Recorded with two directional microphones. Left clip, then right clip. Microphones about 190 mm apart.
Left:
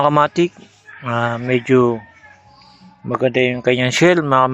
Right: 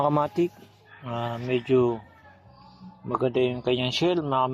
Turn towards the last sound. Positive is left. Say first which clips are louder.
# left 11 dB
turn(degrees=40)  # may be behind; listen again after turning